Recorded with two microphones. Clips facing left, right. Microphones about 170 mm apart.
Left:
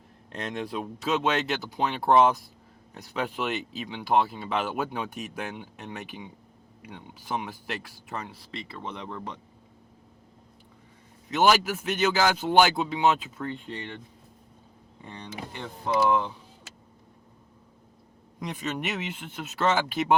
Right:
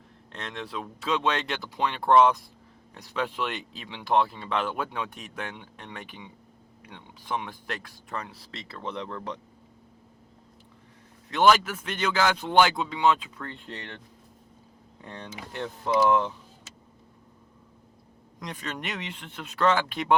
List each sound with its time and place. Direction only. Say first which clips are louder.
0.3 s speech: left 4 dB; 10° left (ahead or behind)
11.3 s speech: right 1 dB; 5° left (ahead or behind)
15.0 s speech: left 1 dB; centre (ahead or behind)
18.3 s speech: left 4 dB; 5° left (ahead or behind)